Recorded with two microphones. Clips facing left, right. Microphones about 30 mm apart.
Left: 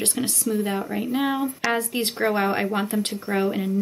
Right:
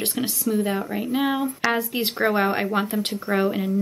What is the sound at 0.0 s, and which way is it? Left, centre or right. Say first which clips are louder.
Speech: even; centre.